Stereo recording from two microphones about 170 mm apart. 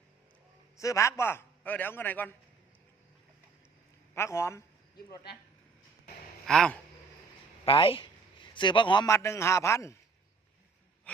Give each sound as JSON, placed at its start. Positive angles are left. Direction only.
{"t": 0.8, "sound": "a man's voice", "side_deg": 20}
{"t": 4.1, "sound": "a man's voice", "side_deg": 15}
{"t": 6.4, "sound": "speech", "side_deg": 5}
{"t": 7.6, "sound": "a man's voice", "side_deg": 30}